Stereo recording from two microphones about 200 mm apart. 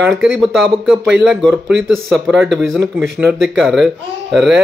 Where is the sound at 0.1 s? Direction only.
Centre (ahead or behind).